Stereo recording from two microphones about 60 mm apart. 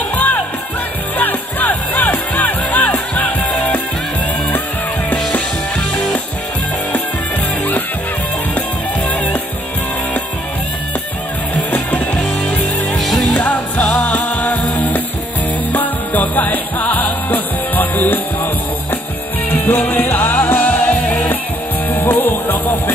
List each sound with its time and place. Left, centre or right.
0.1 s music: left
11.7 s music: left
12.9 s music: centre
13.3 s music: left
19.5 s music: left